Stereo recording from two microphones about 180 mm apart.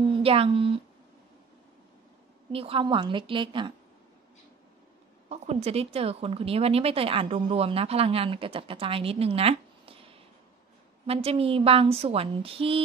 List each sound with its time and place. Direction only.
0.1 s speech: 30° right (ahead or behind)
2.5 s a woman's voice: 30° right (ahead or behind)
5.3 s speech: 35° right (ahead or behind)